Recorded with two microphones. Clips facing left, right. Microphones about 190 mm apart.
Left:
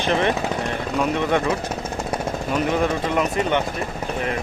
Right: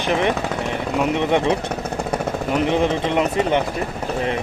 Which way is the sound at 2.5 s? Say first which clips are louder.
Right 2 dB; 20° right (ahead or behind).